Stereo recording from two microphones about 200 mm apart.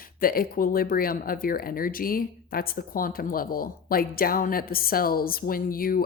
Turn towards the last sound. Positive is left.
turn(degrees=45)  # may be behind; listen again after turning